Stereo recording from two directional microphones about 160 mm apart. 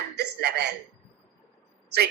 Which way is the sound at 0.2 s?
90° right.